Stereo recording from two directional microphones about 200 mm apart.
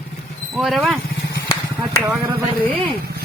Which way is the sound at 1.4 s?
15° left (ahead or behind).